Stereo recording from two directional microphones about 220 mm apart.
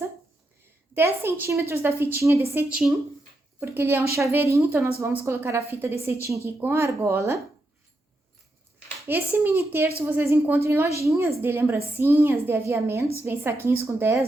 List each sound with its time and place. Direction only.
0.9 s a woman's voice: 10° right (ahead or behind)
9.0 s a woman's voice: 10° right (ahead or behind)